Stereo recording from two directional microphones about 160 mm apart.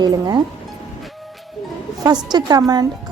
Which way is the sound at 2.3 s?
25° right (ahead or behind).